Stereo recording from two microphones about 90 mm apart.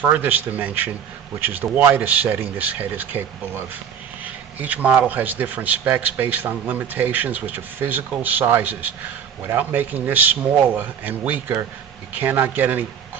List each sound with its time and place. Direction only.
0.0 s speech: 20° right (ahead or behind)